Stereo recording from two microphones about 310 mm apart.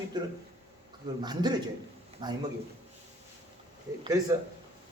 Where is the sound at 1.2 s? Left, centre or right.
Centre.